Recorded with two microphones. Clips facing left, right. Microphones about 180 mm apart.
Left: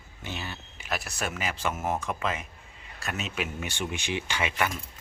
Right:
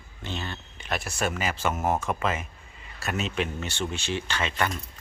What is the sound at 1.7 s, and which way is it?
Speech, 40° right (ahead or behind).